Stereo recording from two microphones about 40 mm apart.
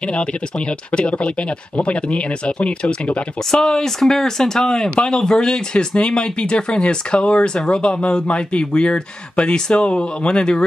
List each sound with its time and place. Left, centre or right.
0.1 s speech: left
3.5 s speech: centre